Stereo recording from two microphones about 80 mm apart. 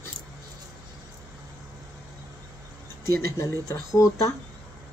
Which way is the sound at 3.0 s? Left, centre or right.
Left.